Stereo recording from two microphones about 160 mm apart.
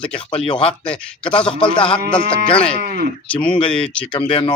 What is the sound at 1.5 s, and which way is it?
Speech, 30° left (ahead or behind).